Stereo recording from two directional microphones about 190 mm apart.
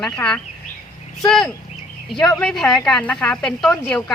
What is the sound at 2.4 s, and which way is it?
Speech, centre (ahead or behind).